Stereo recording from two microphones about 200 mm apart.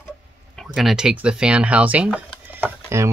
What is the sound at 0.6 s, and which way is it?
Speech, centre (ahead or behind).